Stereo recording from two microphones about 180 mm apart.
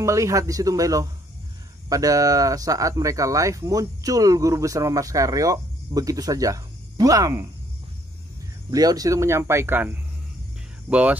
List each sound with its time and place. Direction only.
0.0 s speech: 15° right (ahead or behind)
8.6 s speech: 20° right (ahead or behind)